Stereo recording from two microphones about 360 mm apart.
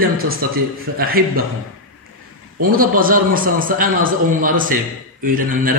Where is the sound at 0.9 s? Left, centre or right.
Right.